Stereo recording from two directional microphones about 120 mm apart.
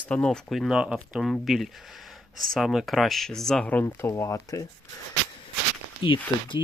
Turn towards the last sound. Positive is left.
turn(degrees=45)  # may be behind; listen again after turning